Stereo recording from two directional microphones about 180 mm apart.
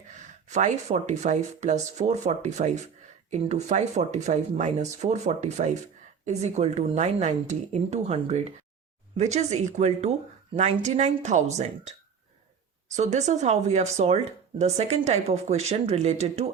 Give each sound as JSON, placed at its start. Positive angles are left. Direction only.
{"t": 0.1, "sound": "speech", "side_deg": -40}